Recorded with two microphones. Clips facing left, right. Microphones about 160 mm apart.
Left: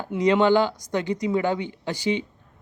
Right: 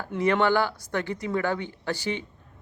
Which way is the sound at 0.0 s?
15° left (ahead or behind).